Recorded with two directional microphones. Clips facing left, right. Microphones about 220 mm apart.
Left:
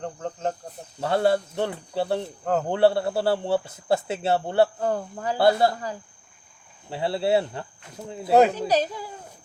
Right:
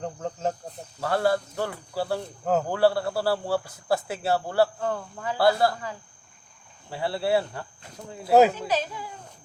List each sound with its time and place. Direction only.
0.0 s cricket: 5° right (ahead or behind)
0.9 s a man's voice: 25° left (ahead or behind)
2.4 s a man's voice: 5° right (ahead or behind)
2.6 s a man's voice: 25° left (ahead or behind)
4.8 s speech: 35° left (ahead or behind)
5.4 s a man's voice: 25° left (ahead or behind)
6.9 s a man's voice: 25° left (ahead or behind)
8.3 s a man's voice: centre (ahead or behind)
8.5 s speech: 40° left (ahead or behind)